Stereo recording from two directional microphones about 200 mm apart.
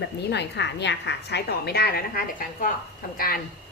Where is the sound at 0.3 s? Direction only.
60° left (ahead or behind).